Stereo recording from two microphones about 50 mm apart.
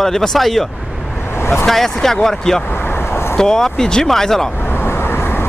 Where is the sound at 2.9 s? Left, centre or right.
Left.